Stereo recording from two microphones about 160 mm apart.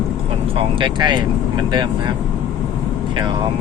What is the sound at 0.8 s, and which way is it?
Speech, 25° right (ahead or behind).